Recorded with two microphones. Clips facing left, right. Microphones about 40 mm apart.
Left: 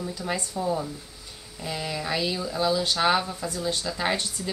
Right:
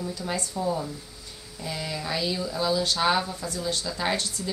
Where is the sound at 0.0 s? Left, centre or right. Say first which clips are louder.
Left 1 dB; centre.